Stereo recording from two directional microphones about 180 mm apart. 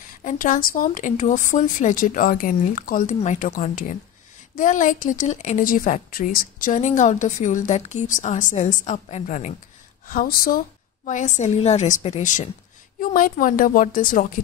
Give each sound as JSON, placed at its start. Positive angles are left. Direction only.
{"t": 0.2, "sound": "a woman's voice", "side_deg": 45}
{"t": 10.0, "sound": "a woman's voice", "side_deg": 50}
{"t": 11.1, "sound": "a woman's voice", "side_deg": 40}